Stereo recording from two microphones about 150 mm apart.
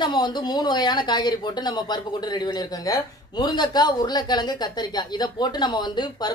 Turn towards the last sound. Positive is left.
turn(degrees=30)  # may be behind; listen again after turning